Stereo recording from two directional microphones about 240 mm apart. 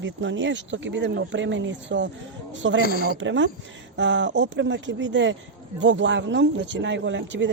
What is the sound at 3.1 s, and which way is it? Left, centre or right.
Speech, right.